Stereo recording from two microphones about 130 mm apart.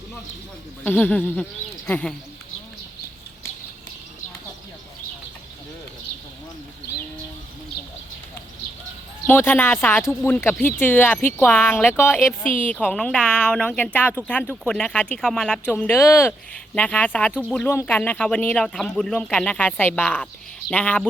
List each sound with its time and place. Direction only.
0.9 s speech: 10° left (ahead or behind)
9.2 s speech: 15° left (ahead or behind)
12.8 s speech: 5° left (ahead or behind)